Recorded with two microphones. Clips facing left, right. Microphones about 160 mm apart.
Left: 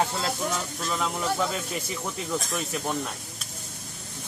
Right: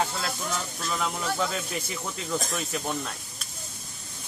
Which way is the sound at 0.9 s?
Centre (ahead or behind).